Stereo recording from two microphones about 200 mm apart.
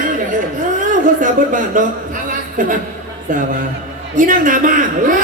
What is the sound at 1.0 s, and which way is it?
Speech, 40° right (ahead or behind).